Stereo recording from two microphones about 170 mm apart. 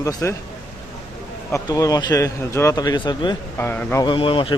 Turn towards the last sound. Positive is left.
turn(degrees=30)  # may be behind; listen again after turning